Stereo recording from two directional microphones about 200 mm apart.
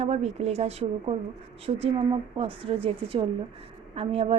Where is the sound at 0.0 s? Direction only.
30° right (ahead or behind).